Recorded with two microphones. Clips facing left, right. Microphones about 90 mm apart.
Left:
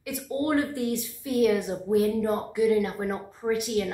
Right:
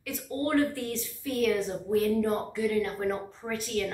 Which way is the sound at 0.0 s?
15° left (ahead or behind).